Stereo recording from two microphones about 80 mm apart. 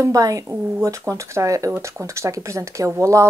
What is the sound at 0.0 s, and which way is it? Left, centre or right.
A woman's voice, right.